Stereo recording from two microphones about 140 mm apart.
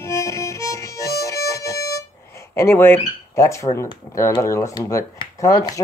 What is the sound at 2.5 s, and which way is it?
Speech, 15° left (ahead or behind).